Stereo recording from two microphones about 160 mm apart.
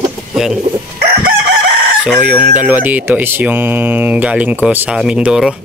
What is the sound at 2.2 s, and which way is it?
Speech, 5° right (ahead or behind).